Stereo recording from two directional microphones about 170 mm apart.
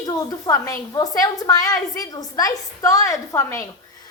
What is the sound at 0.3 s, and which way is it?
A woman's voice, 20° left (ahead or behind).